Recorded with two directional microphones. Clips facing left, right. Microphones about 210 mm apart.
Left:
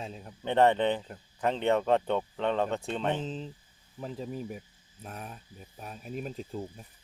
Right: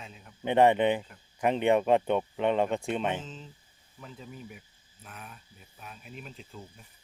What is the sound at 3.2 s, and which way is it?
Speech, 35° left (ahead or behind).